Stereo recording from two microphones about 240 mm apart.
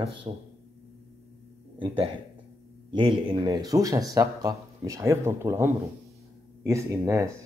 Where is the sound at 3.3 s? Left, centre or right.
Centre.